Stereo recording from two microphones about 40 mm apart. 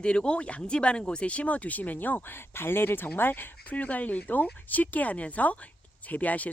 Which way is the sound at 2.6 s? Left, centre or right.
Left.